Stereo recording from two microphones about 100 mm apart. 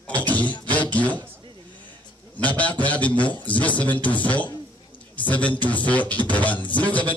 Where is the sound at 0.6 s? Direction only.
15° left (ahead or behind).